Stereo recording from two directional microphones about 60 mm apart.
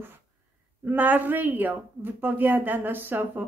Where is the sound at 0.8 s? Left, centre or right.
Right.